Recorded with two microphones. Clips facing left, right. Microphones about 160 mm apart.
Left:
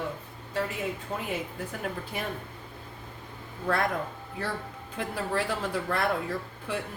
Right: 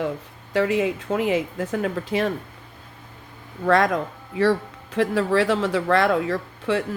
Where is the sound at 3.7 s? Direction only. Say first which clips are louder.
Right 9 dB; 90° right.